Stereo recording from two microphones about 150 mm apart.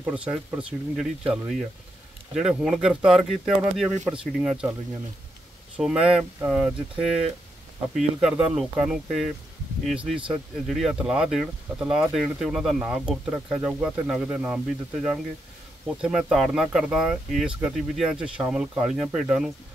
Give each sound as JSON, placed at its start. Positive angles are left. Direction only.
{"t": 0.0, "sound": "speech", "side_deg": -5}
{"t": 5.8, "sound": "speech", "side_deg": -5}
{"t": 15.9, "sound": "speech", "side_deg": -5}